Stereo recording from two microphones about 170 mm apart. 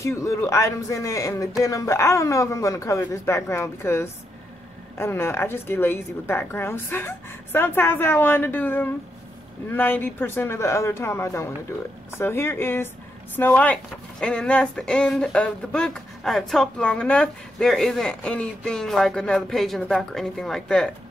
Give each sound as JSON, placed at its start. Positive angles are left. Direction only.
{"t": 0.0, "sound": "a woman's voice", "side_deg": 15}